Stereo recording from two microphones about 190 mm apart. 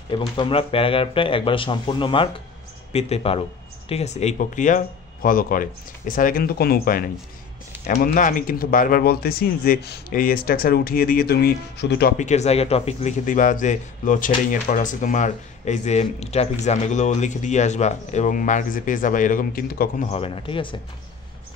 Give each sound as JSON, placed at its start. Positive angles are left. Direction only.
{"t": 0.1, "sound": "a man's voice", "side_deg": 25}
{"t": 12.2, "sound": "a man's voice", "side_deg": 35}
{"t": 20.1, "sound": "speech", "side_deg": 30}